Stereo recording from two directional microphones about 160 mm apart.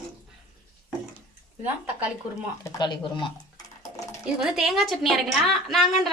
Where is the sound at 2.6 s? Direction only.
25° left (ahead or behind).